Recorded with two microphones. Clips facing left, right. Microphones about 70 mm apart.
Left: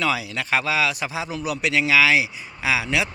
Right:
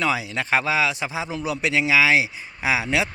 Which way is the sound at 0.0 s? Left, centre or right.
Right.